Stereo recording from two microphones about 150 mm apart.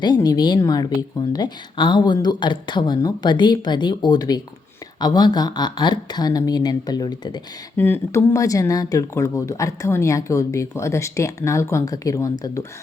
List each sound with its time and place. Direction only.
0.0 s speech: 30° left (ahead or behind)
7.8 s speech: 15° left (ahead or behind)